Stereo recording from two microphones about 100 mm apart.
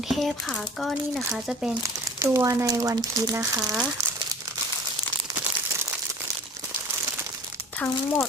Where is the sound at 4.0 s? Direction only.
30° right (ahead or behind).